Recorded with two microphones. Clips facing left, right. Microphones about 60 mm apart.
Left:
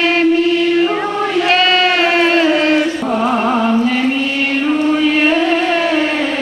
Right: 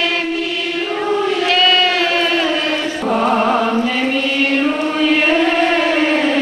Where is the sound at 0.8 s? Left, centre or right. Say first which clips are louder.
Left 6 dB; left.